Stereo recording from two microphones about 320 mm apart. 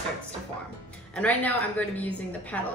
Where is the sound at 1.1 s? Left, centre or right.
Centre.